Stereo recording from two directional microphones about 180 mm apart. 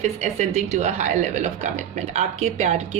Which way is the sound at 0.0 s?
40° right (ahead or behind).